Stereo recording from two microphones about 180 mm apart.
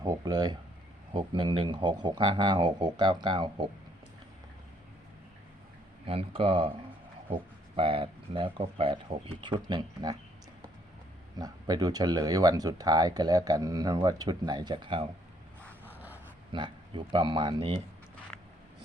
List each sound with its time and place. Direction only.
0.0 s speech: 20° right (ahead or behind)
6.1 s speech: 30° right (ahead or behind)
7.8 s speech: 30° right (ahead or behind)
11.3 s speech: 20° right (ahead or behind)
15.9 s dog: 10° right (ahead or behind)
16.5 s speech: 30° right (ahead or behind)